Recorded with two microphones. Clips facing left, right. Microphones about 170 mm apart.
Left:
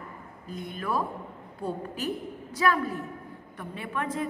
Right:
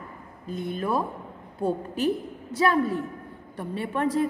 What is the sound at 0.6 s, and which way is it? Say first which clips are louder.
Speech: right 4 dB; 25° right (ahead or behind).